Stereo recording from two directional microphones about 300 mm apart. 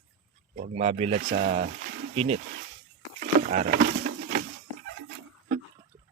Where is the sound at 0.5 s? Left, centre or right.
Right.